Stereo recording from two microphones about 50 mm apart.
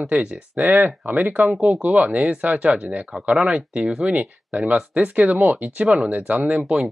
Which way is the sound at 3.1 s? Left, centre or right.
Centre.